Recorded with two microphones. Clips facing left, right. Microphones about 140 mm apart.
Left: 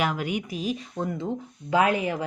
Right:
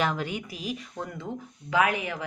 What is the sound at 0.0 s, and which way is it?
A woman's voice, 10° left (ahead or behind).